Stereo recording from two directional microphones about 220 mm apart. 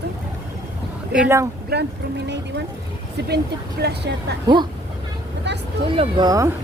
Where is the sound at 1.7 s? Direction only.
45° right (ahead or behind).